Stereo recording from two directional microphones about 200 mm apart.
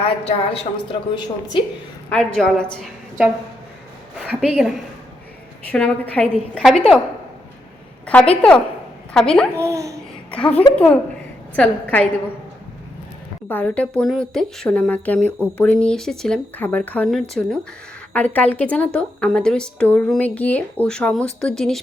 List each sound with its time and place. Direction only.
0.0 s a woman's voice: 30° left (ahead or behind)
2.0 s a woman's voice: 5° left (ahead or behind)
5.7 s speech: 5° left (ahead or behind)
8.0 s speech: 5° left (ahead or behind)
9.6 s speech: 15° right (ahead or behind)
10.3 s a woman's voice: 5° left (ahead or behind)
13.5 s a woman's voice: 10° left (ahead or behind)